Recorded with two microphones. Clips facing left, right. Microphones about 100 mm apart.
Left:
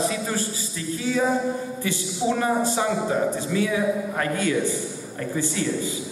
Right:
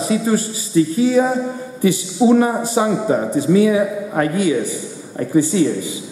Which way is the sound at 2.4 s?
15° right (ahead or behind).